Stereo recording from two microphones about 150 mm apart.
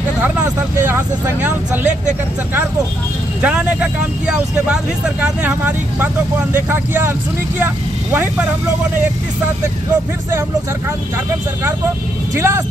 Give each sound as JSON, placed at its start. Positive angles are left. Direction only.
{"t": 0.2, "sound": "speech", "side_deg": -15}
{"t": 3.4, "sound": "speech", "side_deg": -10}
{"t": 12.4, "sound": "speech", "side_deg": -15}